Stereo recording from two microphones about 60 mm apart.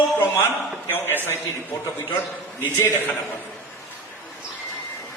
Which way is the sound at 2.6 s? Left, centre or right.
Left.